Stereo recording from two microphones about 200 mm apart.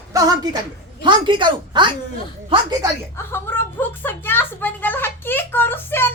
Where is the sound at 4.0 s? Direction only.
10° left (ahead or behind).